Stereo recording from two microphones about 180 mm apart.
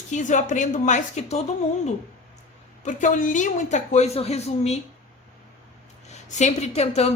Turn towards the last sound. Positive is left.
turn(degrees=35)  # may be behind; listen again after turning